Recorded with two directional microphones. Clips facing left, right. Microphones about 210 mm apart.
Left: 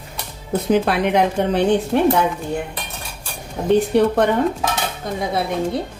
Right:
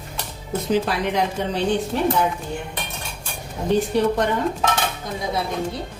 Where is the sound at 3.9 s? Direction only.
60° left (ahead or behind).